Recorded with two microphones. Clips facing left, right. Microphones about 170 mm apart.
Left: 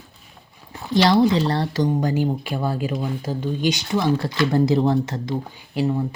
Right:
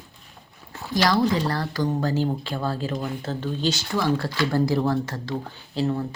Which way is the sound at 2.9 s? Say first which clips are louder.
Left 3 dB; centre (ahead or behind).